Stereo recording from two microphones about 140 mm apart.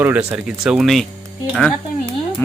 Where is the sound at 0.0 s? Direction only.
15° right (ahead or behind).